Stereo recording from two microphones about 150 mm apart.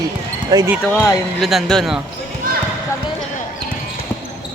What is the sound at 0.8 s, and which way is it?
Speech, 5° left (ahead or behind).